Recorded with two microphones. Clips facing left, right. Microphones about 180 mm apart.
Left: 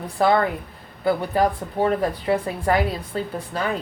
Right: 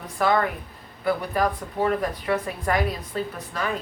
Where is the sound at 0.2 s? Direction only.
30° left (ahead or behind).